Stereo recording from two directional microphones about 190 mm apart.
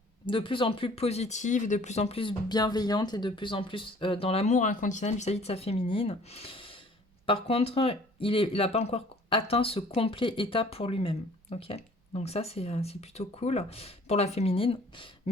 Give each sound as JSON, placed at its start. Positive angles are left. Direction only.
{"t": 0.3, "sound": "speech", "side_deg": 25}